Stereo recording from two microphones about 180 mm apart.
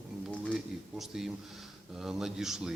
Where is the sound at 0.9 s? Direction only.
Centre (ahead or behind).